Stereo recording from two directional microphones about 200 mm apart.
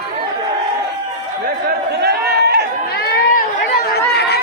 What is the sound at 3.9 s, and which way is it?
Chatter, 55° left (ahead or behind).